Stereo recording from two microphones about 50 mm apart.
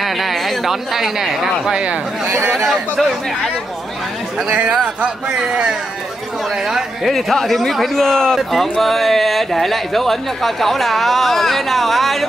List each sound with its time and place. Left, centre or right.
0.0 s speech: centre
4.4 s a man's voice: right; by 12.3 s centre